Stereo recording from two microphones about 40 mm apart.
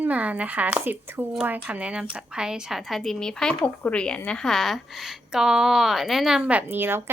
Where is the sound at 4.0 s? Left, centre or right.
Left.